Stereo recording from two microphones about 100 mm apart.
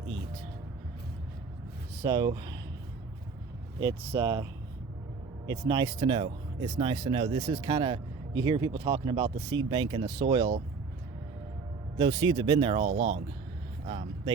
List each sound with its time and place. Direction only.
2.0 s speech: 40° right (ahead or behind)
4.2 s speech: 40° right (ahead or behind)
5.5 s speech: 45° right (ahead or behind)
5.9 s speech: 80° right; by 8.0 s 65° right (ahead or behind)
8.4 s speech: 50° right (ahead or behind); by 10.6 s 70° right (ahead or behind)
11.9 s speech: 90° right
12.2 s speech: 45° right (ahead or behind)
12.5 s speech: 60° right (ahead or behind)
13.8 s speech: 80° right